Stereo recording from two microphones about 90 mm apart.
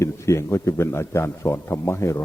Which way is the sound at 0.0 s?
35° left (ahead or behind).